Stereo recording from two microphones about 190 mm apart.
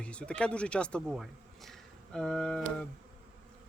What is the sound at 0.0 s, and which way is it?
Speech, 5° left (ahead or behind).